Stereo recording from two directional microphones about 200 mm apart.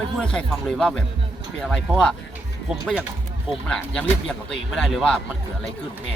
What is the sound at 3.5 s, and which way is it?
Speech, 5° left (ahead or behind).